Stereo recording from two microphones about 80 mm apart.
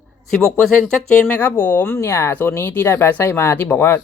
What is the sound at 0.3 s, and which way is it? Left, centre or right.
A woman's voice, centre.